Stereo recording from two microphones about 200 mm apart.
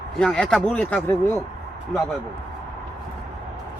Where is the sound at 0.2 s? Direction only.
5° left (ahead or behind).